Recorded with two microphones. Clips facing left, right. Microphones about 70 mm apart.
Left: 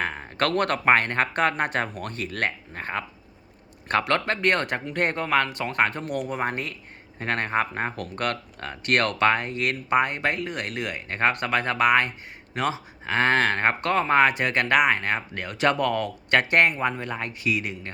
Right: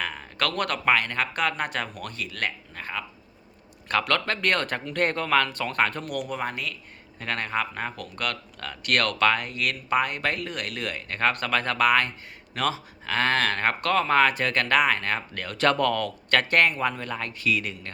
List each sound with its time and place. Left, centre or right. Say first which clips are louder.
0.0 s speech: left 3 dB; left